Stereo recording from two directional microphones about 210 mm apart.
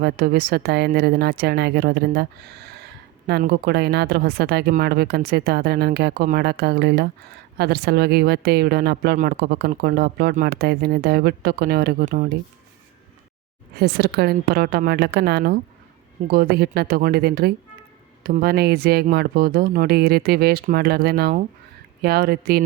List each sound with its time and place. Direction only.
0.0 s a woman's voice: 45° right (ahead or behind)
13.7 s a woman's voice: 50° right (ahead or behind)